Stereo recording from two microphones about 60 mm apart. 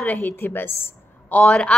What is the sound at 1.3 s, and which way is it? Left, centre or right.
Speech, centre.